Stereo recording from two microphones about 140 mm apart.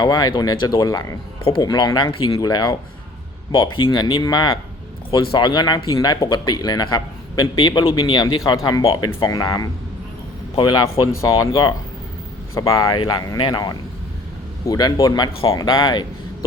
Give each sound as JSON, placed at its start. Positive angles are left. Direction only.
{"t": 0.0, "sound": "speech", "side_deg": 30}
{"t": 8.8, "sound": "speech", "side_deg": 40}
{"t": 9.2, "sound": "speech", "side_deg": 25}